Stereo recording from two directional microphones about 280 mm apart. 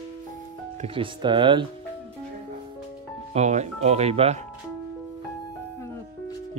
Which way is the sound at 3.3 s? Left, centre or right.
Right.